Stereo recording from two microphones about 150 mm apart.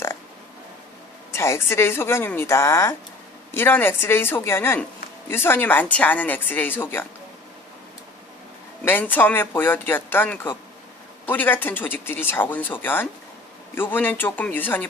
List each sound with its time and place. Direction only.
1.3 s speech: 15° left (ahead or behind)
8.8 s speech: 15° left (ahead or behind)